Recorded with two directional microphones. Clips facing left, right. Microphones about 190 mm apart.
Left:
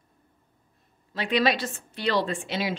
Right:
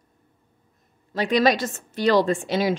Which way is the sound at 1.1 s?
40° right (ahead or behind).